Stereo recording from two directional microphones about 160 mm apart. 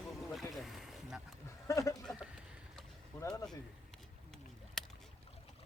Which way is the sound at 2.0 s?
5° left (ahead or behind).